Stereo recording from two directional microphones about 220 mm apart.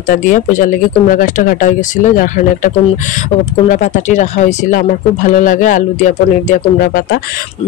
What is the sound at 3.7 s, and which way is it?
Speech, 35° left (ahead or behind).